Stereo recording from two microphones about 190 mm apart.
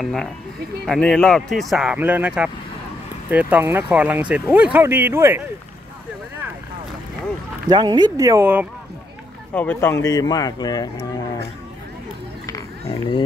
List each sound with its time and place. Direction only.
0.0 s speech: centre (ahead or behind)
7.7 s speech: 20° right (ahead or behind)
9.5 s speech: 10° left (ahead or behind)
12.4 s run: 20° left (ahead or behind)